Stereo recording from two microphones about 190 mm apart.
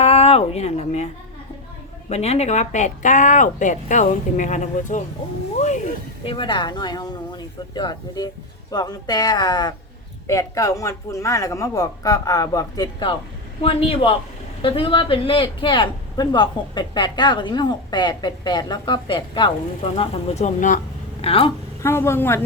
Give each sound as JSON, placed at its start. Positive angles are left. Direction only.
{"t": 0.0, "sound": "a sound", "side_deg": 35}
{"t": 2.0, "sound": "speech", "side_deg": 35}
{"t": 6.2, "sound": "a man's voice", "side_deg": 25}
{"t": 21.8, "sound": "speech", "side_deg": 15}